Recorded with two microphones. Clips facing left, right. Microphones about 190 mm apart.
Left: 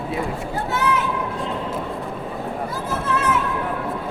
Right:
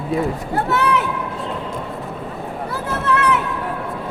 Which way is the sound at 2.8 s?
65° right (ahead or behind).